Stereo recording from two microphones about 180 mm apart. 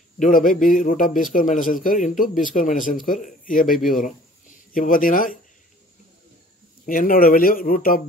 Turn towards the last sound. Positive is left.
turn(degrees=50)  # may be behind; listen again after turning